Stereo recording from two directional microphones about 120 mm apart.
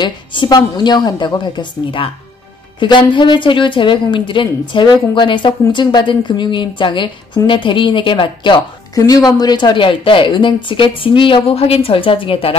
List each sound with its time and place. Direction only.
0.0 s a woman's voice: 40° left (ahead or behind)